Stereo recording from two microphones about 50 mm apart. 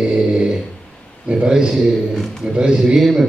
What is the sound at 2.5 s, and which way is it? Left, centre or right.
Mantra, centre.